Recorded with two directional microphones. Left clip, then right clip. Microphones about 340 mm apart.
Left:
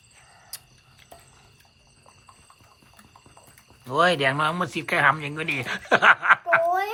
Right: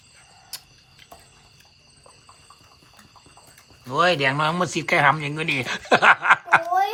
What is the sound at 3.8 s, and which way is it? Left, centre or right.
Speech, centre.